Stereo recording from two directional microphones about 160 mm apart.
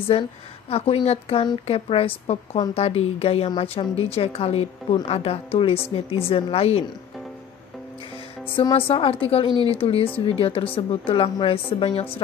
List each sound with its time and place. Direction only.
0.7 s speech: 40° left (ahead or behind)
8.5 s speech: 35° left (ahead or behind)